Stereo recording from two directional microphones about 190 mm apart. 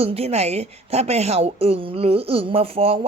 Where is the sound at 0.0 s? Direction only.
30° right (ahead or behind).